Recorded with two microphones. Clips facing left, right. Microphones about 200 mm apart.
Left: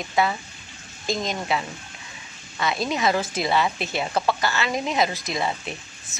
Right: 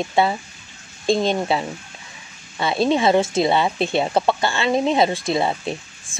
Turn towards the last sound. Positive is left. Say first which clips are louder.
# right 7 dB
turn(degrees=-30)  # may be behind; listen again after turning